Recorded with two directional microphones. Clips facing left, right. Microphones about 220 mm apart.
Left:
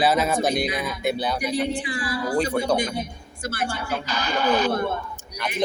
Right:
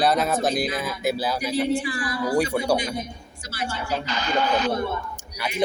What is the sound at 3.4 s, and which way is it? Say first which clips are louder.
Speech: left 3 dB; 55° left (ahead or behind).